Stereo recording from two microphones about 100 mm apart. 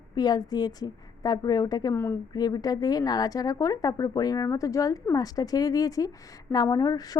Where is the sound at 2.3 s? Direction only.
40° left (ahead or behind).